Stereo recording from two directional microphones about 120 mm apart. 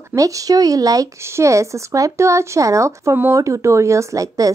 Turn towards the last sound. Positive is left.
turn(degrees=-30)  # may be behind; listen again after turning